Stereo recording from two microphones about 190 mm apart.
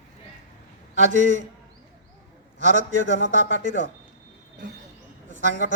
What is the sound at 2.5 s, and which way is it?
A man's voice, 40° right (ahead or behind).